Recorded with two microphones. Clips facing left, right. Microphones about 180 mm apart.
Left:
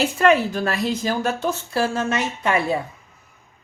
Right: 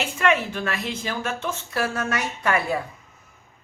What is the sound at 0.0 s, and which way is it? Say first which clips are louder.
Speech: left 5 dB; 35° left (ahead or behind).